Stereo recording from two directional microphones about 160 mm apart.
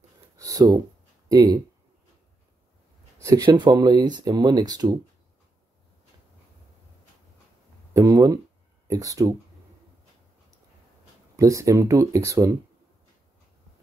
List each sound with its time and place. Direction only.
0.4 s a sound: 25° right (ahead or behind)
1.3 s speech: 25° right (ahead or behind)
3.2 s speech: 20° right (ahead or behind)
7.9 s speech: 20° right (ahead or behind)
11.3 s speech: 20° right (ahead or behind)